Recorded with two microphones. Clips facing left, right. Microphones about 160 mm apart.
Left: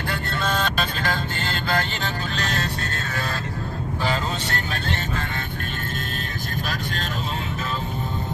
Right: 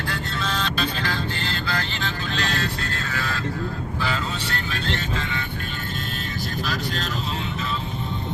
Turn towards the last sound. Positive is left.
turn(degrees=50)  # may be behind; listen again after turning